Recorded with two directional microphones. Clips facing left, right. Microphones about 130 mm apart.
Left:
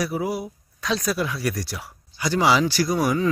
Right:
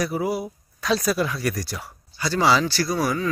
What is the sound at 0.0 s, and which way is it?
Speech, centre (ahead or behind).